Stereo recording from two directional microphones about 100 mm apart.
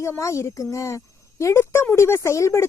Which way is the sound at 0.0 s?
30° left (ahead or behind).